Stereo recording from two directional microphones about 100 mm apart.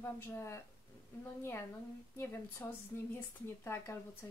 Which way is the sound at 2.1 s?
20° left (ahead or behind).